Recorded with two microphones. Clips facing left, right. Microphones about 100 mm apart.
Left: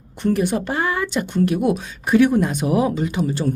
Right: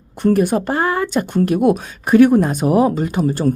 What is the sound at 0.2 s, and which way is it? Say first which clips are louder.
Speech: right 5 dB; 45° right (ahead or behind).